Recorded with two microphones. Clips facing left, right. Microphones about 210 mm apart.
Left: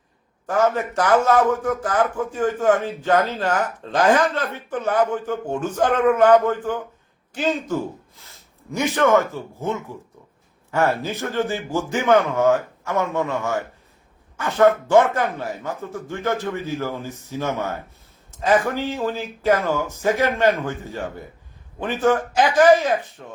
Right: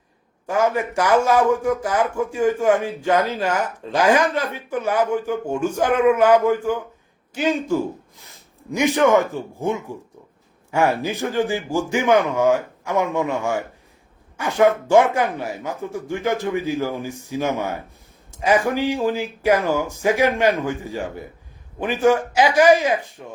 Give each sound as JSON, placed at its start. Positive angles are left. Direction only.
{"t": 0.4, "sound": "a man's voice", "side_deg": -10}